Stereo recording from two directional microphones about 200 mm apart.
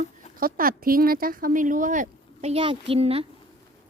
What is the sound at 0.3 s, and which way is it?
Speech, 45° right (ahead or behind).